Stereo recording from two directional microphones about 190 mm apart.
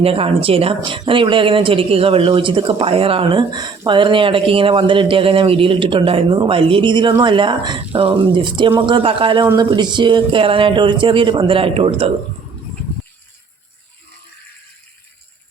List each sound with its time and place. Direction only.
0.0 s speech: 30° right (ahead or behind)